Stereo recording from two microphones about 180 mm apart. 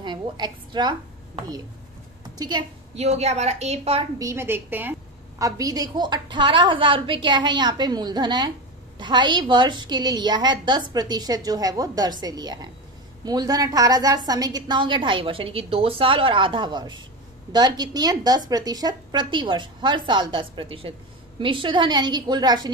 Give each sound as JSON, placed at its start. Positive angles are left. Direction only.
{"t": 0.0, "sound": "a woman's voice", "side_deg": -25}
{"t": 3.0, "sound": "a woman's voice", "side_deg": -35}
{"t": 4.2, "sound": "a woman's voice", "side_deg": -15}